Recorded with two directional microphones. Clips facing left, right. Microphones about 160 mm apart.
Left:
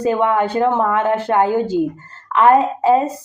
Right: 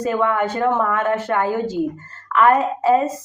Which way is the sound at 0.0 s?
25° left (ahead or behind).